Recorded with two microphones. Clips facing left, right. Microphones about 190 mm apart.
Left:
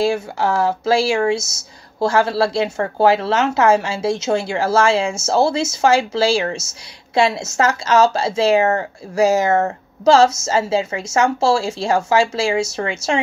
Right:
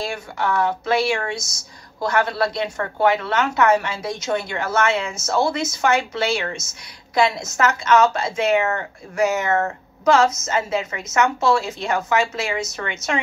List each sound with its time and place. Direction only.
0.0 s a woman's voice: 25° left (ahead or behind)